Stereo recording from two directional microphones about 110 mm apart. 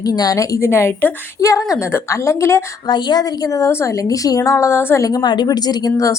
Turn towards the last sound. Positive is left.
turn(degrees=30)  # may be behind; listen again after turning